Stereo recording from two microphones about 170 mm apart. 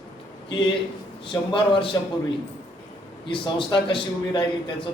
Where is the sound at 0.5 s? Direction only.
30° left (ahead or behind).